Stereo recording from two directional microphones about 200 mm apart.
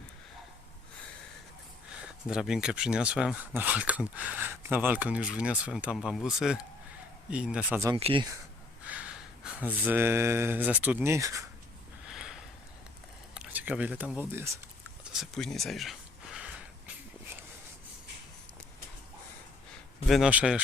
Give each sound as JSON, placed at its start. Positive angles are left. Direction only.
{"t": 2.3, "sound": "speech", "side_deg": -5}
{"t": 7.9, "sound": "speech", "side_deg": -30}
{"t": 8.8, "sound": "gasp", "side_deg": -5}
{"t": 9.8, "sound": "speech", "side_deg": -10}
{"t": 12.0, "sound": "a sound", "side_deg": 0}
{"t": 13.3, "sound": "speech", "side_deg": -5}
{"t": 15.1, "sound": "a sound", "side_deg": 0}
{"t": 20.1, "sound": "speech", "side_deg": 0}